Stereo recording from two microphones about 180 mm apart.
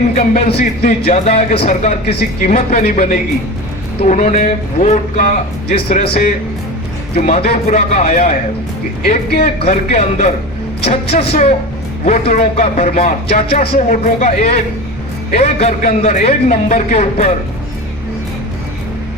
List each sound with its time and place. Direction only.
0.2 s speech: 35° left (ahead or behind)
7.2 s speech: 35° left (ahead or behind)
9.4 s speech: 35° left (ahead or behind)